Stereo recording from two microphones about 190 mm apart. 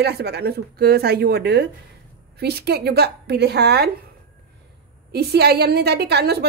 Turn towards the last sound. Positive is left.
turn(degrees=-60)  # may be behind; listen again after turning